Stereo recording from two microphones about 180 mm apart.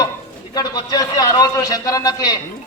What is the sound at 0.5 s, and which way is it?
A man's voice, 20° left (ahead or behind).